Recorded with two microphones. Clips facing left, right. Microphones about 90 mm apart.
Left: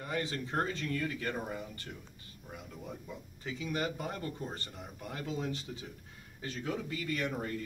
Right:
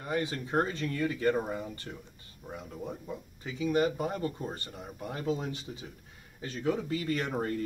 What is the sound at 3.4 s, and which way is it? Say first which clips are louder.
Speech: right 7 dB; 25° right (ahead or behind).